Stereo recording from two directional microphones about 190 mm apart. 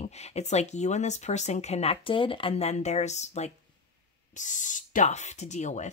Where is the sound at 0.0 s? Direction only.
35° left (ahead or behind).